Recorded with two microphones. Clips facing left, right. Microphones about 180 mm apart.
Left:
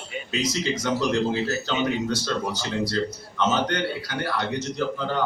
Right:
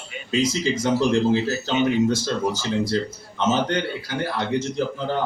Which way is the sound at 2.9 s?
25° right (ahead or behind).